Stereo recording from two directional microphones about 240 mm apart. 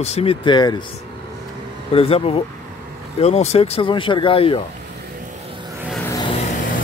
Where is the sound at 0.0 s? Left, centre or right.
Left.